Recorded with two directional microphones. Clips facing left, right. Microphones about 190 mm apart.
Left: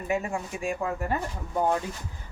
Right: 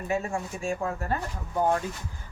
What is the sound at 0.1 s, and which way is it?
A woman's voice, 15° left (ahead or behind).